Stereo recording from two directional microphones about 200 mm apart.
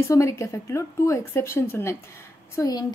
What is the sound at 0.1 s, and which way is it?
A woman's voice, 15° left (ahead or behind).